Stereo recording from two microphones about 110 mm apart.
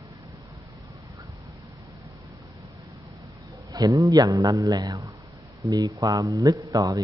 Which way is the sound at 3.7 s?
30° right (ahead or behind).